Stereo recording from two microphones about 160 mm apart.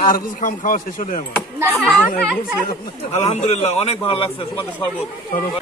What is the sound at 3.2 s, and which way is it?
A man's voice, 40° left (ahead or behind).